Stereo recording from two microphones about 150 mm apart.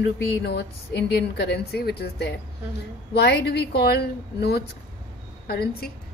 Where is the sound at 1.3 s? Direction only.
90° left.